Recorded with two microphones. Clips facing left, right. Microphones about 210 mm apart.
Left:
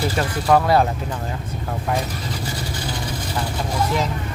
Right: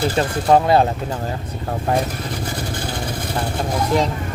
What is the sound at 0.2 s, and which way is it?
Speech, 25° right (ahead or behind).